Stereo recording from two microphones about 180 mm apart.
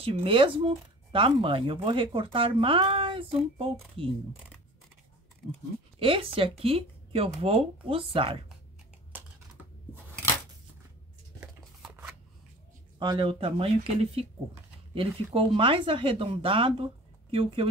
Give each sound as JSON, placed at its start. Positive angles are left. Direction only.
{"t": 0.0, "sound": "speech", "side_deg": -30}
{"t": 5.9, "sound": "speech", "side_deg": -30}
{"t": 9.1, "sound": "computer keyboard", "side_deg": -10}
{"t": 11.3, "sound": "a sound", "side_deg": -10}
{"t": 13.0, "sound": "speech", "side_deg": -25}